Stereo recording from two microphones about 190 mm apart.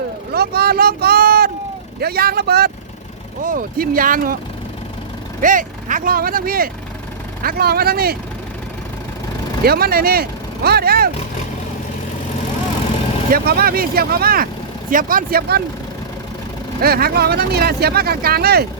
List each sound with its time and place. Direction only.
0.3 s speech: 55° right (ahead or behind)
3.4 s speech: 45° right (ahead or behind)
5.4 s speech: 45° right (ahead or behind)
9.6 s speech: 55° right (ahead or behind)
13.3 s speech: 55° right (ahead or behind)
16.8 s speech: 55° right (ahead or behind)